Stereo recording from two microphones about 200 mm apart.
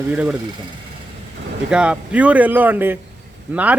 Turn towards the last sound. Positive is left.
turn(degrees=-5)  # may be behind; listen again after turning